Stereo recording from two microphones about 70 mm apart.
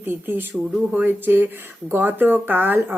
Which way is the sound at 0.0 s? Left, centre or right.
Right.